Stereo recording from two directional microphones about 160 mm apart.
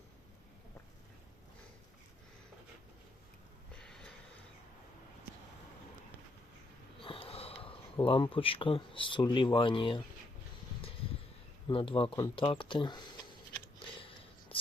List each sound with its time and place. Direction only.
3.8 s a sound: 5° left (ahead or behind)
7.0 s wheeze: 35° left (ahead or behind)
8.0 s speech: 35° left (ahead or behind)
11.7 s speech: 35° left (ahead or behind)
14.5 s whispering: 35° left (ahead or behind)